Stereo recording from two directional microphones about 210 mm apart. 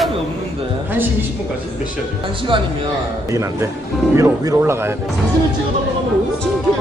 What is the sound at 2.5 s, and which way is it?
A man's voice, 25° right (ahead or behind).